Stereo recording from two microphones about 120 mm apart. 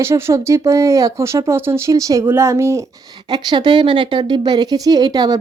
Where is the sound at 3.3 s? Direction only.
40° right (ahead or behind).